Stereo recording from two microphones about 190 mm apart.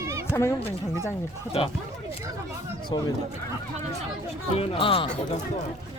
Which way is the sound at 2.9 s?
20° left (ahead or behind).